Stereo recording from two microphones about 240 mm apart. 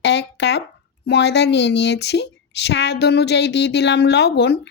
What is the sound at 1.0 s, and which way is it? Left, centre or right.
Speech, left.